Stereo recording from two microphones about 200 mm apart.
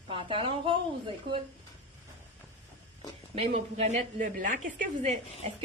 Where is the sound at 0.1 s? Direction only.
25° right (ahead or behind).